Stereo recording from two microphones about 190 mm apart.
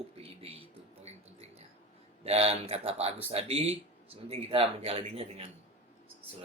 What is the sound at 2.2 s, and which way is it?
A man's voice, 30° right (ahead or behind).